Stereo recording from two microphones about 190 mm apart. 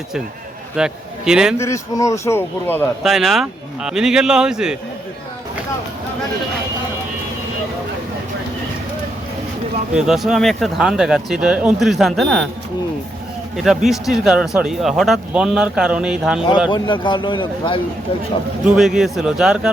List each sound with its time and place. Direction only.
0.8 s a man's voice: 5° right (ahead or behind)
1.5 s a man's voice: 15° left (ahead or behind)
3.0 s speech: centre (ahead or behind)
9.9 s speech: 5° right (ahead or behind)
13.6 s speech: centre (ahead or behind)
16.6 s speech: 25° left (ahead or behind)
18.6 s speech: centre (ahead or behind)